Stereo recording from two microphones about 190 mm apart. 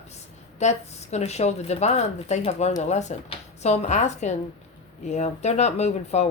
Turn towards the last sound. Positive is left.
turn(degrees=35)  # may be behind; listen again after turning